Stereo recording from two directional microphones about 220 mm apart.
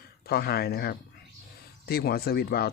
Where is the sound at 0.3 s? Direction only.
45° left (ahead or behind).